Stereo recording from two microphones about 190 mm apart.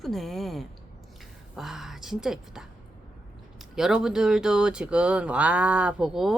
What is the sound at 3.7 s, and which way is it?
Speech, centre (ahead or behind).